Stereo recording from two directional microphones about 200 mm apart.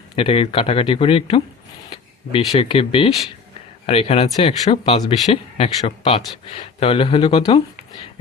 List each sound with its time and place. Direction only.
0.2 s speech: 30° left (ahead or behind)
2.5 s speech: 25° left (ahead or behind)